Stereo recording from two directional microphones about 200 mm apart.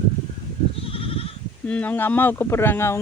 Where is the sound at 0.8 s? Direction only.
30° left (ahead or behind).